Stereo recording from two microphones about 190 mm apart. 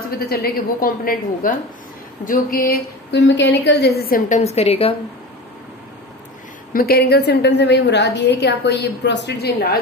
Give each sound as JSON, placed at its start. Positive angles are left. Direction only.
{"t": 0.3, "sound": "a woman's voice", "side_deg": 50}
{"t": 4.4, "sound": "a woman's voice", "side_deg": 35}
{"t": 6.7, "sound": "a woman's voice", "side_deg": 50}